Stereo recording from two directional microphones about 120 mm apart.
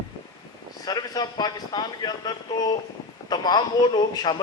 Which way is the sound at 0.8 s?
35° left (ahead or behind).